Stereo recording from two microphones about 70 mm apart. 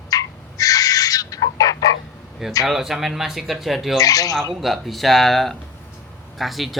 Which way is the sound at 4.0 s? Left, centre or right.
Left.